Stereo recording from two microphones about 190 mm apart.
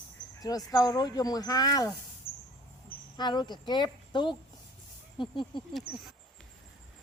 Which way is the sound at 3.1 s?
25° left (ahead or behind).